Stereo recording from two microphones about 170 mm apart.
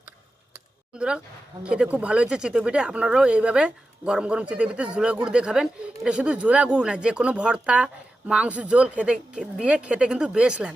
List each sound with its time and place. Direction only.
0.9 s speech: 5° right (ahead or behind)